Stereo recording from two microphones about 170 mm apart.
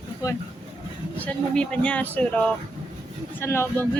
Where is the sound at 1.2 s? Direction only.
5° left (ahead or behind).